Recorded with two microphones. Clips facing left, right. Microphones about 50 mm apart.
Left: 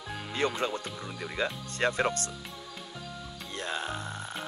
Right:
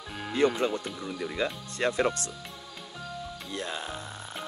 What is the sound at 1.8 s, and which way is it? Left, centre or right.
Speech, left.